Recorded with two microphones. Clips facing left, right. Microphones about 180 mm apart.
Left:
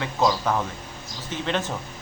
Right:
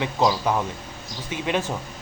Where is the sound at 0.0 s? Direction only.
15° right (ahead or behind).